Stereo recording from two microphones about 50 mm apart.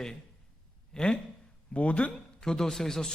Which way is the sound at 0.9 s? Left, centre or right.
Centre.